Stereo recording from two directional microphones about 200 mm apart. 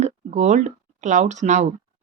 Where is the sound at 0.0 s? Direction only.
35° right (ahead or behind).